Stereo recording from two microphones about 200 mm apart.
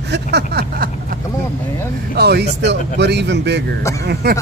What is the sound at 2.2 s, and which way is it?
Speech, 55° right (ahead or behind).